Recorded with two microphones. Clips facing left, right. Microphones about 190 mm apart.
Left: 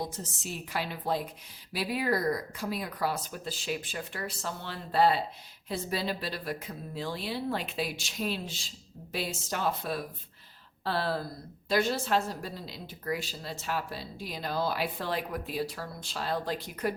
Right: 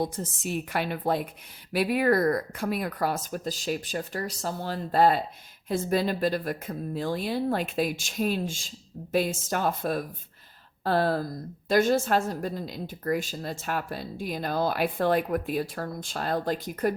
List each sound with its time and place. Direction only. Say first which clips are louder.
0.0 s a woman's voice: right 7 dB; 55° right (ahead or behind)